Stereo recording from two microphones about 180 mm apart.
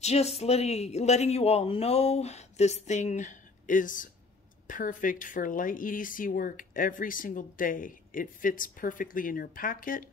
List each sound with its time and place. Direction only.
0.0 s a man's voice: 35° left (ahead or behind)